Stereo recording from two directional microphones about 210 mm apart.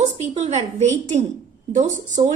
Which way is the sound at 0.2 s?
30° right (ahead or behind).